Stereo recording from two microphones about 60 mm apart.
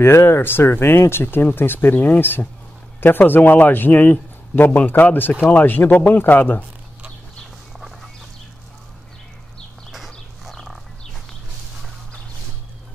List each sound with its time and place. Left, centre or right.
0.0 s speech: left
9.8 s livestock: centre